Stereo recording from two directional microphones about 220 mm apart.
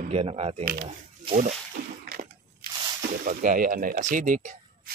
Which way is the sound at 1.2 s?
35° right (ahead or behind).